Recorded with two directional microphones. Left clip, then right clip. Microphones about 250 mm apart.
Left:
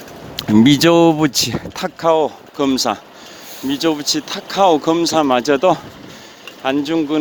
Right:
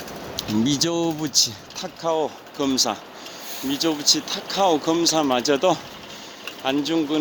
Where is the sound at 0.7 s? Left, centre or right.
Left.